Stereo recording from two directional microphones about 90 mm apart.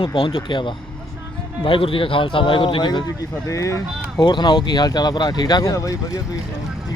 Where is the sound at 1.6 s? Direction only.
80° left; by 3.0 s 55° left (ahead or behind).